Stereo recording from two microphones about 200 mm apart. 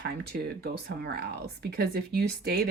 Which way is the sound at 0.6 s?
55° right (ahead or behind).